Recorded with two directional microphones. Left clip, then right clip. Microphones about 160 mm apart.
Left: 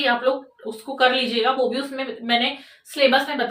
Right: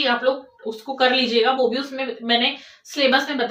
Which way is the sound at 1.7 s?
5° left (ahead or behind).